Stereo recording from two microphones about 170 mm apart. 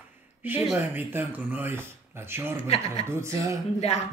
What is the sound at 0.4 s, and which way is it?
Speech, 10° right (ahead or behind).